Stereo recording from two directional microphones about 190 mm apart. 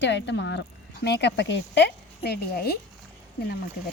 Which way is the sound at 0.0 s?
70° left (ahead or behind).